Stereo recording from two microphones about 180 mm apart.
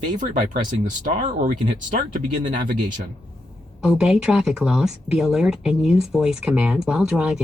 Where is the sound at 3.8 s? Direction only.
5° right (ahead or behind).